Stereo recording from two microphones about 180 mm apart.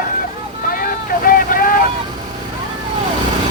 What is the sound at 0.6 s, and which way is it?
Vehicle, 50° left (ahead or behind).